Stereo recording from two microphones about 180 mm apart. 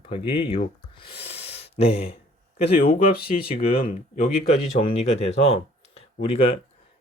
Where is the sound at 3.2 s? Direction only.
30° left (ahead or behind).